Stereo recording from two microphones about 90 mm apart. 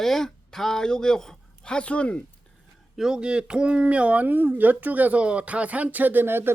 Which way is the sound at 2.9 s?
5° right (ahead or behind).